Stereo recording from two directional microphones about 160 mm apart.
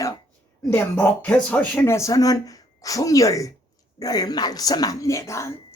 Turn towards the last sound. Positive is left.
turn(degrees=20)  # may be behind; listen again after turning